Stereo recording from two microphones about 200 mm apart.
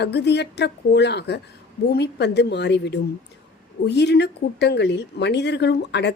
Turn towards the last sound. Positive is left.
turn(degrees=60)  # may be behind; listen again after turning